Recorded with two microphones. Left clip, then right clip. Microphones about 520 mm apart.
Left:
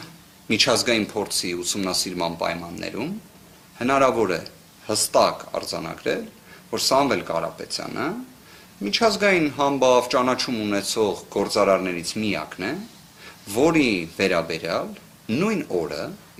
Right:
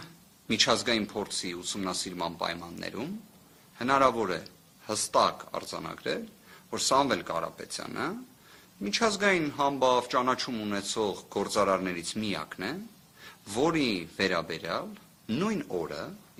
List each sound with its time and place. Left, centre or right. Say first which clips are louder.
0.4 s a man's voice: left 6 dB; right